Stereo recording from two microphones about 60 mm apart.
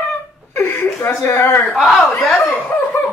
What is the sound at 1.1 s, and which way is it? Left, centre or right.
Speech, left.